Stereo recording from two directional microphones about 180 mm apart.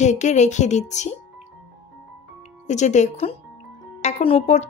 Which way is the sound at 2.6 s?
40° left (ahead or behind).